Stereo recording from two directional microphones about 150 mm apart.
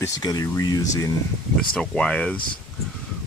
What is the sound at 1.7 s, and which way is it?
Speech, 5° left (ahead or behind).